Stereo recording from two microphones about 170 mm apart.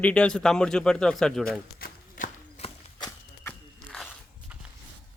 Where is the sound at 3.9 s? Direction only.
5° left (ahead or behind).